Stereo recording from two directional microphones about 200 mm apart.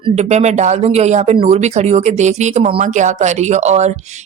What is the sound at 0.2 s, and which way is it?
Speech, 35° right (ahead or behind).